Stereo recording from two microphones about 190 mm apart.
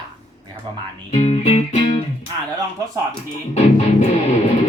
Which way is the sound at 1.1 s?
35° left (ahead or behind).